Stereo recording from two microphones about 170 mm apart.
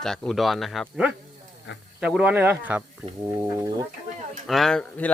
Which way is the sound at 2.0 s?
5° right (ahead or behind).